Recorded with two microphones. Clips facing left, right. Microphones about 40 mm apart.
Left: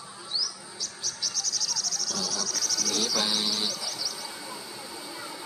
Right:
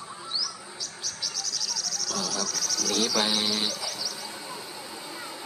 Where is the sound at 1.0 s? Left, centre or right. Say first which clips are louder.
Left 1 dB; centre.